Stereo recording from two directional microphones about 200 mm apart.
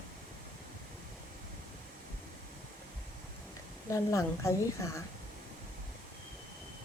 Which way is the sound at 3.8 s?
15° left (ahead or behind).